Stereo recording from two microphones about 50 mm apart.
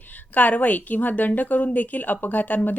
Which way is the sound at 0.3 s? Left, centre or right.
Left.